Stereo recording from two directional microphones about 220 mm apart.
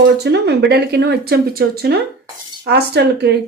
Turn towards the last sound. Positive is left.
turn(degrees=-50)  # may be behind; listen again after turning